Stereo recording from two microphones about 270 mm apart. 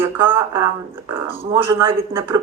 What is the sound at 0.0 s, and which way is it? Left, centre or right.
Speech, centre.